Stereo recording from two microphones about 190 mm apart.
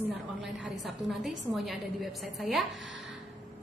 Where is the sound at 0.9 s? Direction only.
Centre (ahead or behind).